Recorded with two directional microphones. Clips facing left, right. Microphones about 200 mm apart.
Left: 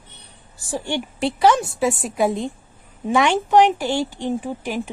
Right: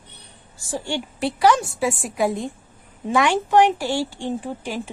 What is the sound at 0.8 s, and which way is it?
Speech, 20° left (ahead or behind).